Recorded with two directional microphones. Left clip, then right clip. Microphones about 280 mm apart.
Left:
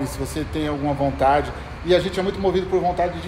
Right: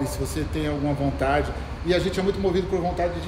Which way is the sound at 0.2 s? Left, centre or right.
Centre.